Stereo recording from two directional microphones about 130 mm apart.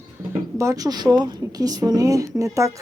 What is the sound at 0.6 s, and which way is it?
A woman's voice, 25° right (ahead or behind).